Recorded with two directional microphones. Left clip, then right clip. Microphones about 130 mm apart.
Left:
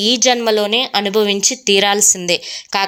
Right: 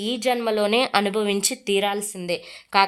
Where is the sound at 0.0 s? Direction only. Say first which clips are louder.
Left 10 dB; 30° left (ahead or behind).